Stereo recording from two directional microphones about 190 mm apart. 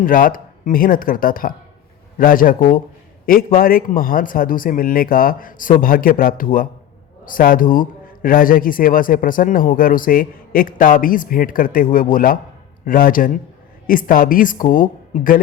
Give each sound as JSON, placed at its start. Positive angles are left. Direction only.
{"t": 0.0, "sound": "a man's voice", "side_deg": 45}